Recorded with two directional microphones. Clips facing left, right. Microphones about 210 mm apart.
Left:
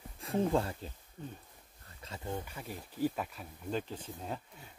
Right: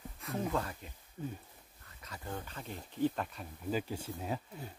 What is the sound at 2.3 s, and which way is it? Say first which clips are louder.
Speech: left 2 dB; 10° left (ahead or behind).